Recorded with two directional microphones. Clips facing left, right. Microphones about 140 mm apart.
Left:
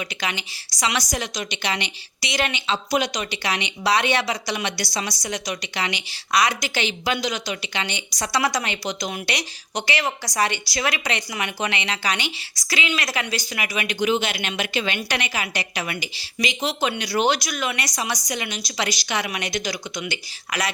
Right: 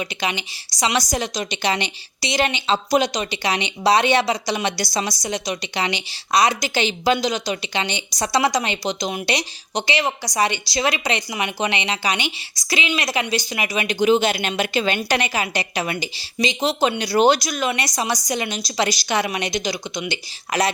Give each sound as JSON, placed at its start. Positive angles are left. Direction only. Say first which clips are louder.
{"t": 0.0, "sound": "a woman's voice", "louder": "right 4 dB", "side_deg": -20}